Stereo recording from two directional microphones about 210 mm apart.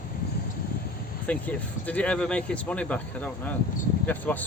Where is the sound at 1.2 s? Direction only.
5° left (ahead or behind).